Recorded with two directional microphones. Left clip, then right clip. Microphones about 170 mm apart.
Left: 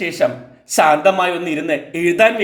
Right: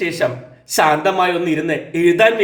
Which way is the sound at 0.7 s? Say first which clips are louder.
Left 2 dB; 30° left (ahead or behind).